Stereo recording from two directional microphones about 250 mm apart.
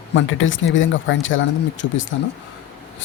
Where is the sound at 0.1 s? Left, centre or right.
Left.